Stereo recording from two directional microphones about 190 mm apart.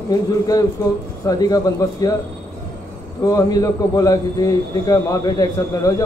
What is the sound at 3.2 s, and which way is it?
A man's voice, 20° left (ahead or behind).